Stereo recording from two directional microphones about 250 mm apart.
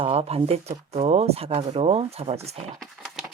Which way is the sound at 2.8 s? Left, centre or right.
Centre.